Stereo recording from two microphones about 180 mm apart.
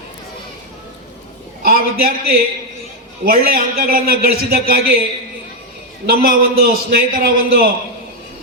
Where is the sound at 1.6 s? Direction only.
55° right (ahead or behind).